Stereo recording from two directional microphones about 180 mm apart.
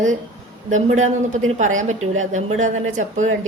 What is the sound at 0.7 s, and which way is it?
A man's voice, 40° right (ahead or behind).